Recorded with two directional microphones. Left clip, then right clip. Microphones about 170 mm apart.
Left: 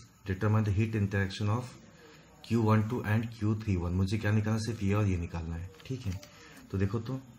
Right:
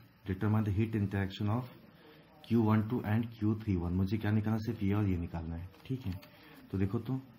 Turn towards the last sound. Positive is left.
turn(degrees=-40)  # may be behind; listen again after turning